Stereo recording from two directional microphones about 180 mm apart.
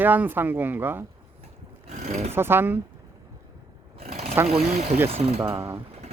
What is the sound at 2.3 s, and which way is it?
Speech, 10° right (ahead or behind).